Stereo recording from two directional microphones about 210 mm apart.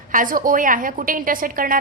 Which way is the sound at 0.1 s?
40° right (ahead or behind).